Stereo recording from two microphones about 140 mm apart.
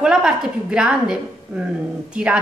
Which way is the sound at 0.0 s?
5° right (ahead or behind).